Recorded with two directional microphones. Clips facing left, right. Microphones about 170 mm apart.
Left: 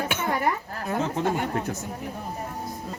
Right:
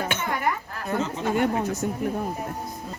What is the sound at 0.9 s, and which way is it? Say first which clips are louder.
Speech: even; 60° left (ahead or behind).